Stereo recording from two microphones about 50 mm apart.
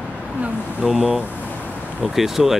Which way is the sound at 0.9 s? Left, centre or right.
Centre.